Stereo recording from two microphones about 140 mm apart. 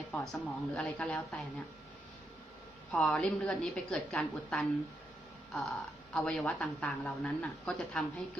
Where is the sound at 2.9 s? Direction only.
5° left (ahead or behind).